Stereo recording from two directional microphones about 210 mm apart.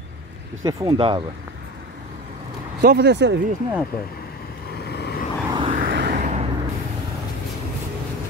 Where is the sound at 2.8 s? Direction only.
50° right (ahead or behind).